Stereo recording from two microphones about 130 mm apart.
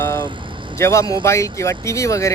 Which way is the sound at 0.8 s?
20° left (ahead or behind).